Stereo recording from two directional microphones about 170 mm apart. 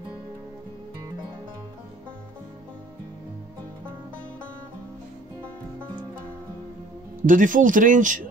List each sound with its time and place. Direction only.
7.2 s speech: 50° right (ahead or behind)